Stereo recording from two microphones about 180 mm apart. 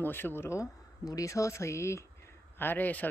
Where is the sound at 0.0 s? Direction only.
10° left (ahead or behind).